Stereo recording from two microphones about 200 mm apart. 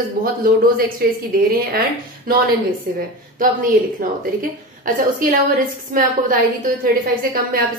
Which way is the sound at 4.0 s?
45° right (ahead or behind).